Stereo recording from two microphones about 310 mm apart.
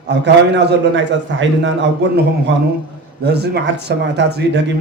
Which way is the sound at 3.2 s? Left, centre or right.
Right.